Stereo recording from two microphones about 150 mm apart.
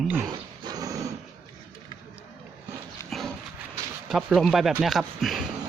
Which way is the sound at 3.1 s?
Centre (ahead or behind).